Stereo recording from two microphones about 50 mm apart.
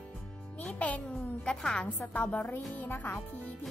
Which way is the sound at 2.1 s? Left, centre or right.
Left.